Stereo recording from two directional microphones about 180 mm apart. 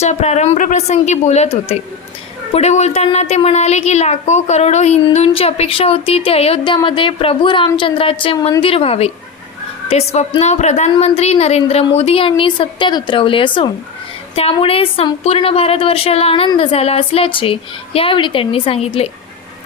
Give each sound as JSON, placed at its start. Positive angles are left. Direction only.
{"t": 0.0, "sound": "a woman's voice", "side_deg": 40}